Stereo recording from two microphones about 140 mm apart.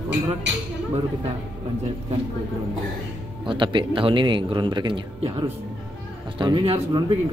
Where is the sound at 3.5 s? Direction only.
35° right (ahead or behind).